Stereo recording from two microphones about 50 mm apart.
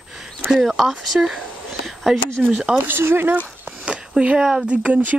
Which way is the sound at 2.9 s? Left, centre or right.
Right.